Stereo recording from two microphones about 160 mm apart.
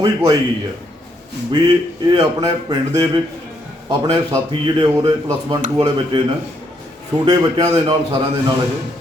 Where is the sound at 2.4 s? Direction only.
20° right (ahead or behind).